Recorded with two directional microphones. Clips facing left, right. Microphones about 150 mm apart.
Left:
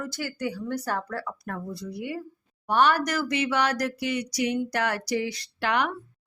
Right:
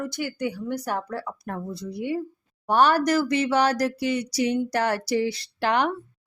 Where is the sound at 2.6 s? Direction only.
35° right (ahead or behind).